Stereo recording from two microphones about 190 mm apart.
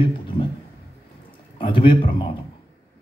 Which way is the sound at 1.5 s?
25° left (ahead or behind).